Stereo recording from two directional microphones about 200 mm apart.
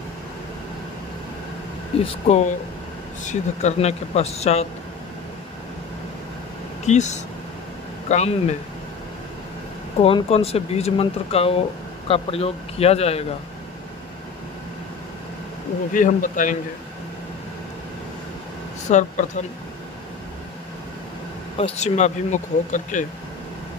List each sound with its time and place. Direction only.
2.0 s speech: 35° left (ahead or behind)
6.9 s speech: 35° left (ahead or behind)
10.0 s speech: 30° left (ahead or behind)
15.9 s speech: 40° left (ahead or behind)
18.9 s speech: 35° left (ahead or behind)
21.5 s speech: 30° left (ahead or behind)